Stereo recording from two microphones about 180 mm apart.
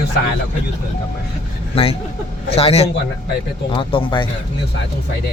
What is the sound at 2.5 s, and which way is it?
A man's voice, 35° left (ahead or behind).